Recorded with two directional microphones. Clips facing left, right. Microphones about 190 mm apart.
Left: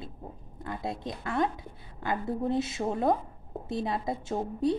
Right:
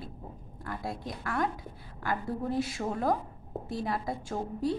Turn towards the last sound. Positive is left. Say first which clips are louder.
# left 3 dB
turn(degrees=20)  # may be behind; listen again after turning